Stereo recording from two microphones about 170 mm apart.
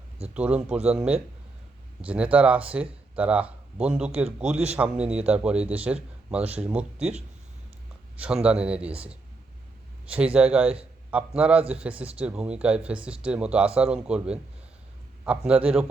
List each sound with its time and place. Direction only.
0.3 s a man's voice: 5° right (ahead or behind)
6.4 s speech: 35° right (ahead or behind)
6.7 s speech: 5° right (ahead or behind)
8.2 s speech: 5° right (ahead or behind)
10.3 s speech: 5° right (ahead or behind)